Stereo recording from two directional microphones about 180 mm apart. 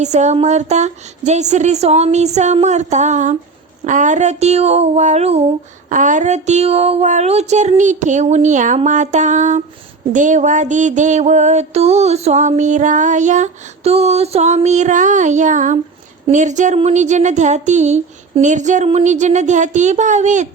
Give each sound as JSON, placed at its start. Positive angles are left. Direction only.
{"t": 0.0, "sound": "speech", "side_deg": -40}